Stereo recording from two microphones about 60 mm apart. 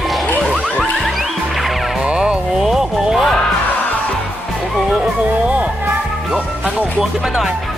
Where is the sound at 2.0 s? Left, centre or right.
Centre.